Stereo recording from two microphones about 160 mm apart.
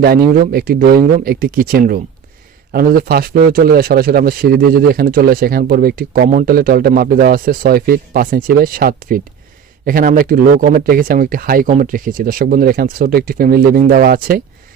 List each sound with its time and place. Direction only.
0.4 s speech: 70° right (ahead or behind)